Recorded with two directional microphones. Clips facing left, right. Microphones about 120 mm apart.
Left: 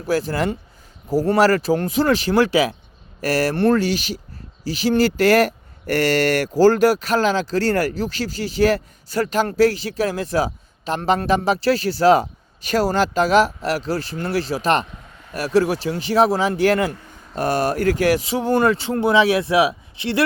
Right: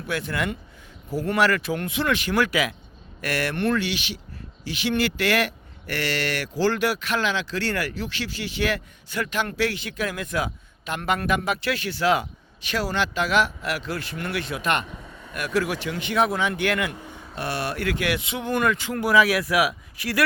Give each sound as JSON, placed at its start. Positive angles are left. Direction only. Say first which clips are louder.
{"t": 0.0, "sound": "speech", "louder": "left 7 dB", "side_deg": 35}